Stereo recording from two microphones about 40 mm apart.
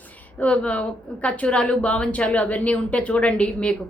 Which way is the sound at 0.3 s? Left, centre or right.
Left.